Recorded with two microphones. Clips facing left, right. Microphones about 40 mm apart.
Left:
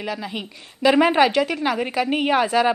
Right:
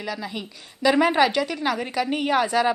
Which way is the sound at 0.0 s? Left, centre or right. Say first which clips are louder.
Left 2 dB; left.